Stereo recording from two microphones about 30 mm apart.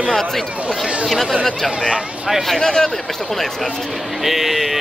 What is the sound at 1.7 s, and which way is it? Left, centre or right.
Speech, right.